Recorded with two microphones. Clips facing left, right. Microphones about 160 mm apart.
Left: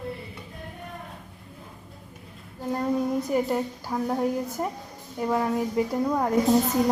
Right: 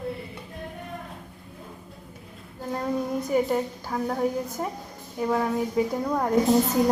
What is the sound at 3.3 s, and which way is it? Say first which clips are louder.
A woman's voice: right 1 dB; centre (ahead or behind).